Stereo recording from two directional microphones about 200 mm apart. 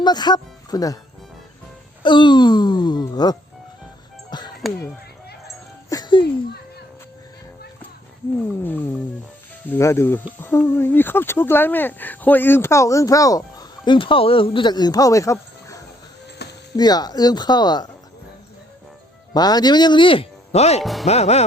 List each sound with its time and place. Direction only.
0.0 s speech: 20° left (ahead or behind)
2.0 s speech: 25° left (ahead or behind)
4.3 s music: 20° left (ahead or behind)
5.9 s music: 20° left (ahead or behind)
9.6 s speech: 15° left (ahead or behind)
16.4 s music: 55° left (ahead or behind)
16.7 s speech: 20° left (ahead or behind)
19.3 s speech: 20° left (ahead or behind)
20.8 s speech: centre (ahead or behind)
21.1 s speech: 35° left (ahead or behind)